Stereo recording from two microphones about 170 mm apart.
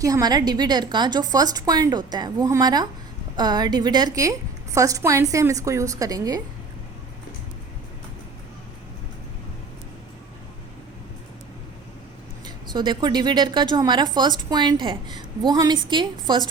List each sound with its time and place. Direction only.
0.0 s a woman's voice: 20° right (ahead or behind)
12.5 s a woman's voice: 25° right (ahead or behind)